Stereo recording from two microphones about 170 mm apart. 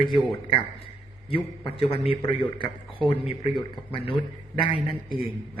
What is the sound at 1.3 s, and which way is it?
A man's voice, 35° left (ahead or behind).